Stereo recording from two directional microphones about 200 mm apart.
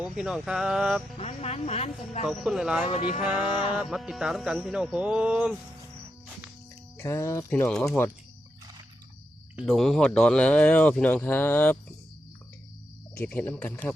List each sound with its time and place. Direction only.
0.2 s speech: 5° right (ahead or behind)
1.2 s speech: 30° left (ahead or behind)
2.2 s speech: centre (ahead or behind)
7.0 s speech: 15° left (ahead or behind)
9.6 s speech: centre (ahead or behind)
13.1 s speech: 10° left (ahead or behind)